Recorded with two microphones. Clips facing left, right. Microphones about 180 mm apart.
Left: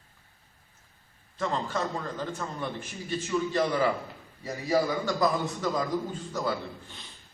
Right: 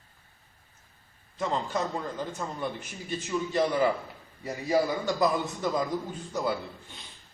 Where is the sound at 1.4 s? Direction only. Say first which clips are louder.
Even; 15° right (ahead or behind).